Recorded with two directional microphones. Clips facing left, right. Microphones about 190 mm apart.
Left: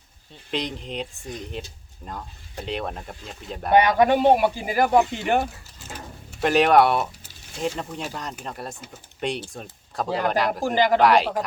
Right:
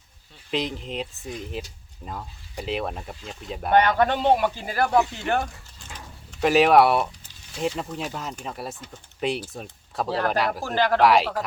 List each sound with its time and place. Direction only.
0.5 s speech: centre (ahead or behind)
3.7 s speech: 10° left (ahead or behind)
5.4 s speech: 5° left (ahead or behind)
7.2 s a sound: 10° left (ahead or behind)
7.8 s speech: centre (ahead or behind)
10.6 s speech: 15° left (ahead or behind)
11.0 s speech: centre (ahead or behind)